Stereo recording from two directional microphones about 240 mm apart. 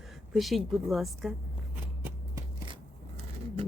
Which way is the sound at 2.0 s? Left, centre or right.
Centre.